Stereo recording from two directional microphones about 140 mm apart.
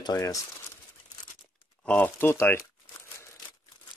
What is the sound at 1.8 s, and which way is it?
Speech, 10° left (ahead or behind).